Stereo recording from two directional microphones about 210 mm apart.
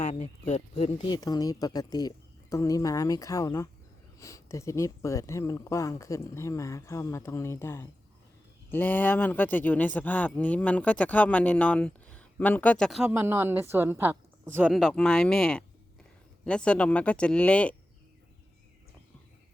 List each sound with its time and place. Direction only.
0.0 s speech: 35° left (ahead or behind); by 17.7 s 5° left (ahead or behind)